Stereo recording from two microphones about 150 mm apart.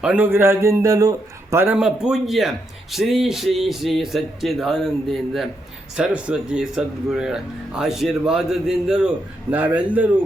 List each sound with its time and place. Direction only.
0.0 s a man's voice: 10° right (ahead or behind)
1.8 s speech: 5° right (ahead or behind)